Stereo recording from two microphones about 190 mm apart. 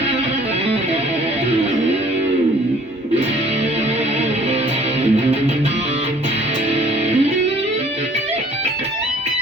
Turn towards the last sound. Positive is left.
turn(degrees=-35)  # may be behind; listen again after turning